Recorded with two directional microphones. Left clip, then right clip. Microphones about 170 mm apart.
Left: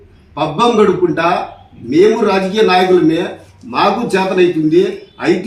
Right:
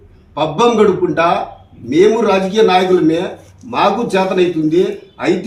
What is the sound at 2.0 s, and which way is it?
A man's voice, 15° right (ahead or behind).